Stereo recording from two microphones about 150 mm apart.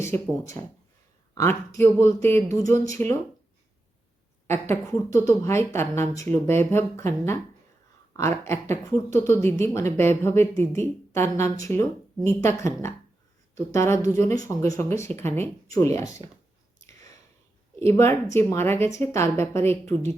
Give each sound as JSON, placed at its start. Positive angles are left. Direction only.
{"t": 0.0, "sound": "speech", "side_deg": 20}
{"t": 4.4, "sound": "a woman's voice", "side_deg": 15}
{"t": 16.8, "sound": "whispering", "side_deg": 20}
{"t": 17.7, "sound": "a woman's voice", "side_deg": 15}